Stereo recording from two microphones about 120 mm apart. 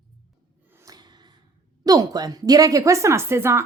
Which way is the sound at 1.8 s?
30° right (ahead or behind).